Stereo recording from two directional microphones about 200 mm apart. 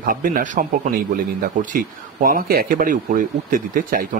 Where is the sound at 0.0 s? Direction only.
45° right (ahead or behind).